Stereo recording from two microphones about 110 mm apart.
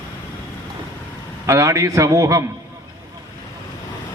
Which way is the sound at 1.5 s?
25° right (ahead or behind).